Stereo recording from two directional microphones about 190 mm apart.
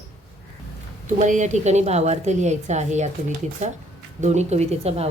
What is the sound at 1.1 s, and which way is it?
A woman's voice, 40° right (ahead or behind).